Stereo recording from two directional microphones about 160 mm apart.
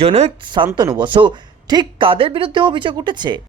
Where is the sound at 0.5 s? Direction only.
30° right (ahead or behind).